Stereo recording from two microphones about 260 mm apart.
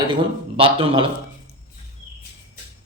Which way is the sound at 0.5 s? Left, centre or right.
Right.